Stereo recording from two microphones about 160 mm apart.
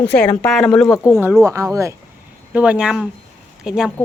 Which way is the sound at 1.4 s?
20° right (ahead or behind).